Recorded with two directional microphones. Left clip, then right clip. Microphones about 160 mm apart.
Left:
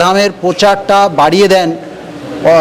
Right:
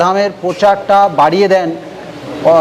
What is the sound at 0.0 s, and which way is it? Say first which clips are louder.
A man's voice: left 2 dB; 30° left (ahead or behind).